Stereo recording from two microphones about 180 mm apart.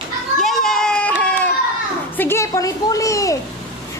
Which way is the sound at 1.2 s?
5° left (ahead or behind).